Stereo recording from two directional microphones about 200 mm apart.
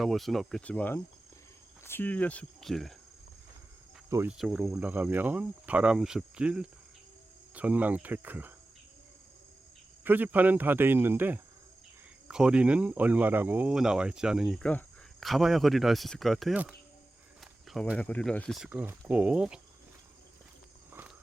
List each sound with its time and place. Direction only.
0.0 s speech: centre (ahead or behind)
4.1 s speech: 10° right (ahead or behind)
10.0 s speech: 10° right (ahead or behind)